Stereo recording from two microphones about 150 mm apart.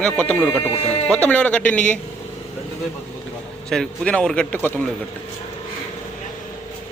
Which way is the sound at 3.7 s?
5° left (ahead or behind).